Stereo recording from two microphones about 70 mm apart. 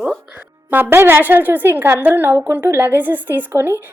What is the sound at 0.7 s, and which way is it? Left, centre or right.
A woman's voice, right.